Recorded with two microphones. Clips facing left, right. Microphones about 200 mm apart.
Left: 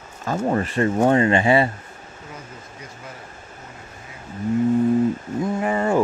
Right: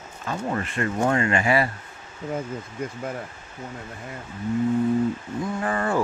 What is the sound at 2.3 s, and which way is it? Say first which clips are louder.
Speech: right 12 dB; 55° right (ahead or behind).